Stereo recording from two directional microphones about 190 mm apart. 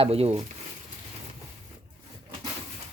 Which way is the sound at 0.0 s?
30° right (ahead or behind).